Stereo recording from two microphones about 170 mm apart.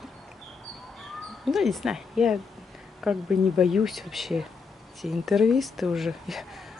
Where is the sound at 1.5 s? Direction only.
Centre (ahead or behind).